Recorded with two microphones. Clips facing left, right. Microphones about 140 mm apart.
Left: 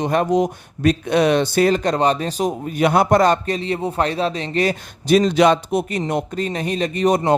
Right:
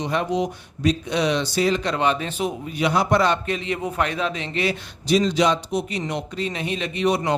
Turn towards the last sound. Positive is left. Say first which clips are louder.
# left 4 dB
turn(degrees=45)  # may be behind; listen again after turning